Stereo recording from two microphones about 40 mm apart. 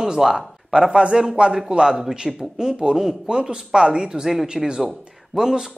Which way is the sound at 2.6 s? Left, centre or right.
Centre.